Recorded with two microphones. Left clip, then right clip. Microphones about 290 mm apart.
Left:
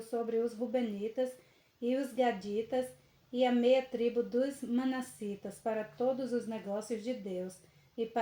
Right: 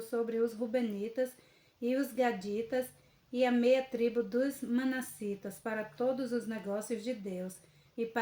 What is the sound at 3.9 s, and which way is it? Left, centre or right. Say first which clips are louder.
Speech: even; right.